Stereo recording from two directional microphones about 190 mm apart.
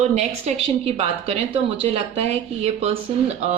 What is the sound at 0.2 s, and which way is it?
Speech, 35° right (ahead or behind).